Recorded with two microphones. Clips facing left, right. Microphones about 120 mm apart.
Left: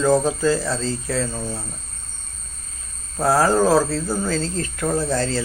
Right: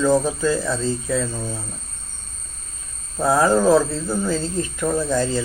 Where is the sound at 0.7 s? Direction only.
15° right (ahead or behind).